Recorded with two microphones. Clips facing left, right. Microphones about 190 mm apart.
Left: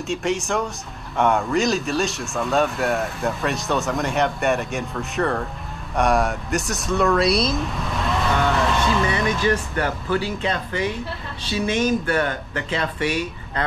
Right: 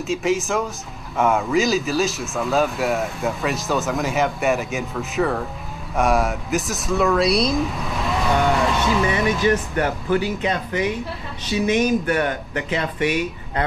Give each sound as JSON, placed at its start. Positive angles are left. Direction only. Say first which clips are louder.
{"t": 0.0, "sound": "speech", "louder": "right 3 dB", "side_deg": 0}